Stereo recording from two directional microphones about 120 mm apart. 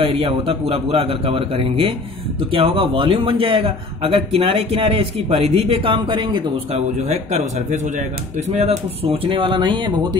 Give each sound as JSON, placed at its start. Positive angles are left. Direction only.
{"t": 0.0, "sound": "a man's voice", "side_deg": -50}
{"t": 6.0, "sound": "speech", "side_deg": -40}
{"t": 6.7, "sound": "a man's voice", "side_deg": -65}